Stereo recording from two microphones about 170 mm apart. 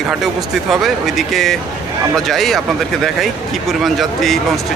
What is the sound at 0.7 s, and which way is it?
A man's voice, centre (ahead or behind).